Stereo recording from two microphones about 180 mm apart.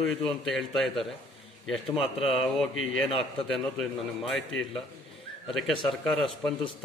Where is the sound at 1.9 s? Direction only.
35° left (ahead or behind).